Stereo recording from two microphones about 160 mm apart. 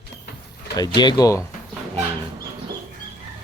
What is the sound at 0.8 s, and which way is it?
Speech, 25° left (ahead or behind).